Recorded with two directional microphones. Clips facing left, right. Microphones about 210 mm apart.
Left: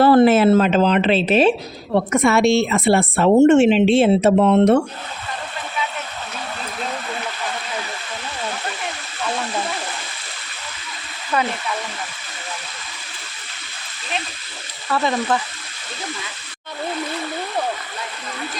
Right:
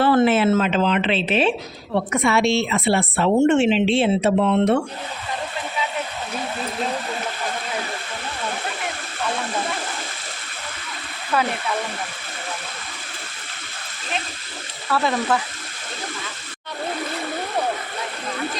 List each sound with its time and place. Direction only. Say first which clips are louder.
0.0 s a woman's voice: left 4 dB; 40° left (ahead or behind)
11.3 s speech: even; 5° right (ahead or behind)
14.8 s speech: left 1 dB; 5° right (ahead or behind)